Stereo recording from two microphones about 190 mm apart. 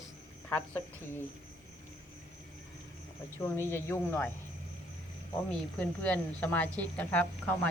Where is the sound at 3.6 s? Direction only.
15° left (ahead or behind).